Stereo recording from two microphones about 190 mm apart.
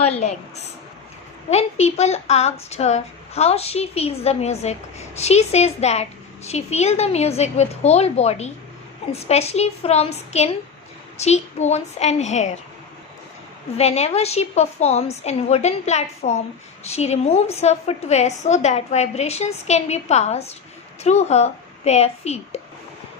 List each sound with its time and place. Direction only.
0.0 s a woman's voice: 35° left (ahead or behind)
1.5 s a woman's voice: 35° left (ahead or behind)
13.7 s a woman's voice: 35° left (ahead or behind)